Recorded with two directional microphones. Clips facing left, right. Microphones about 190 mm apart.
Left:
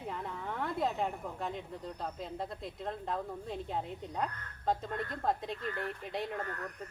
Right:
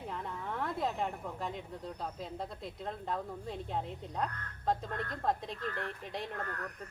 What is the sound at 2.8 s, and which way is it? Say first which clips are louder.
Speech: left 1 dB; centre (ahead or behind).